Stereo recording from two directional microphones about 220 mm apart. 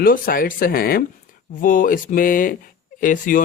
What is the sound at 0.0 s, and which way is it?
Speech, 40° left (ahead or behind).